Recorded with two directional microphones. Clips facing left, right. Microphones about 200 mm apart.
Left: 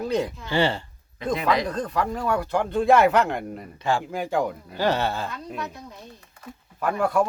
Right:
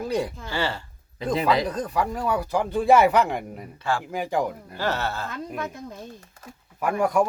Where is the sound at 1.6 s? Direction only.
10° right (ahead or behind).